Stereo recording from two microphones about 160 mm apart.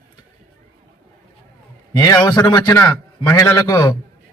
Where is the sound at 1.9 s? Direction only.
20° left (ahead or behind).